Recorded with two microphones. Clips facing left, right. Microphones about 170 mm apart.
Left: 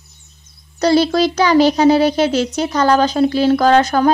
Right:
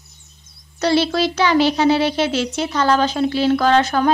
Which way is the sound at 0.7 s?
40° left (ahead or behind).